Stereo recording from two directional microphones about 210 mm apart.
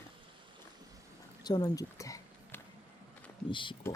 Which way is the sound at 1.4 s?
20° left (ahead or behind).